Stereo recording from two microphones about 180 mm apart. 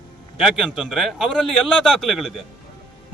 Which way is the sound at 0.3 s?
Centre (ahead or behind).